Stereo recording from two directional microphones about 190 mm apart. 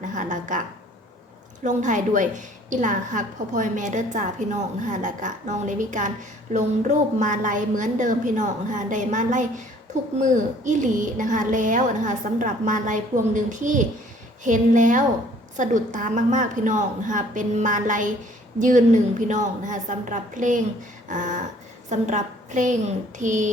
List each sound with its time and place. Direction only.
0.0 s a woman's voice: 40° right (ahead or behind)
1.6 s a woman's voice: 40° right (ahead or behind)
19.3 s a woman's voice: 40° right (ahead or behind)